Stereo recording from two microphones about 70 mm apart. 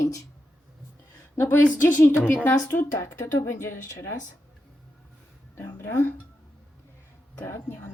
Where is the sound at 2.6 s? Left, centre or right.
Left.